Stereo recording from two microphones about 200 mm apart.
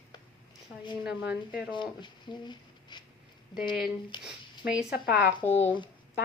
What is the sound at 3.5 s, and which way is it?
Speech, 20° left (ahead or behind).